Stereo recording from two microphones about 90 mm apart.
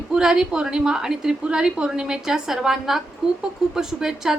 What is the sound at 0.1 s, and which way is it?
A woman's voice, 5° right (ahead or behind).